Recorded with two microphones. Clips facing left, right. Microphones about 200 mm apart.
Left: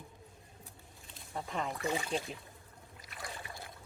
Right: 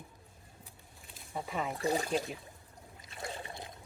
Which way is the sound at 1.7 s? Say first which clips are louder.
Right 6 dB; 35° right (ahead or behind).